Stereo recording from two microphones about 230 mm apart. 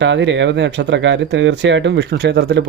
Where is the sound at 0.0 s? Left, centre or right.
Right.